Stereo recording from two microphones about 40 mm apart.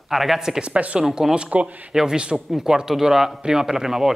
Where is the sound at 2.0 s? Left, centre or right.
Centre.